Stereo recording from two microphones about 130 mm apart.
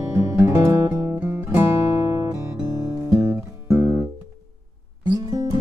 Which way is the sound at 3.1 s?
20° right (ahead or behind).